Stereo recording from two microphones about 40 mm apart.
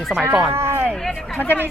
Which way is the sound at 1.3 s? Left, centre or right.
Left.